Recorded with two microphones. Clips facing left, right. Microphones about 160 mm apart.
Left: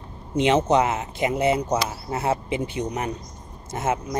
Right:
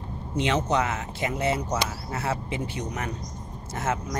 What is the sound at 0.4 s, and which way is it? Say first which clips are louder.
Speech: left 6 dB; 20° left (ahead or behind).